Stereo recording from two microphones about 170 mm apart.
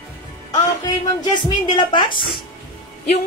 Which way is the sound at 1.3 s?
25° left (ahead or behind).